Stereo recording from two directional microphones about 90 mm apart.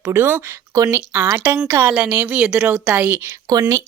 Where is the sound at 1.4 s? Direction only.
25° right (ahead or behind).